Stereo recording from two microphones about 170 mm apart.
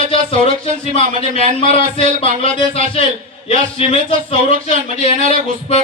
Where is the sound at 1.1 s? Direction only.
45° right (ahead or behind).